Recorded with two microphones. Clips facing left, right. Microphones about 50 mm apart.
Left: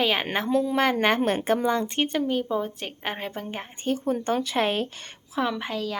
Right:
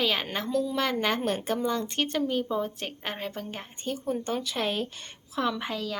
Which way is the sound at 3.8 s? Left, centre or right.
Left.